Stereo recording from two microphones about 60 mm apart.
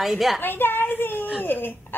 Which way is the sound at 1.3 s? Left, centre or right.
Left.